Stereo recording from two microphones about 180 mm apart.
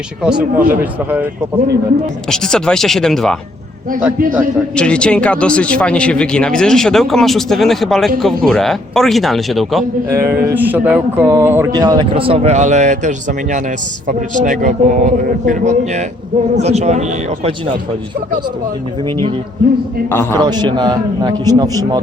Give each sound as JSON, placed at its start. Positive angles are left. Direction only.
{"t": 0.2, "sound": "a man's voice", "side_deg": -5}
{"t": 2.3, "sound": "a man's voice", "side_deg": 5}
{"t": 4.7, "sound": "a man's voice", "side_deg": 5}
{"t": 10.1, "sound": "a man's voice", "side_deg": -15}
{"t": 20.1, "sound": "a man's voice", "side_deg": 15}
{"t": 20.4, "sound": "speech", "side_deg": -25}